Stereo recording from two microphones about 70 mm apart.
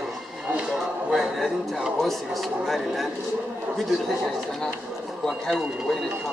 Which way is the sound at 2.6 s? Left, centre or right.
Centre.